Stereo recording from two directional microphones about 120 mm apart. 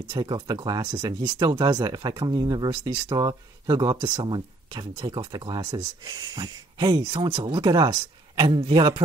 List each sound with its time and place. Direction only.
0.1 s speech: 40° right (ahead or behind)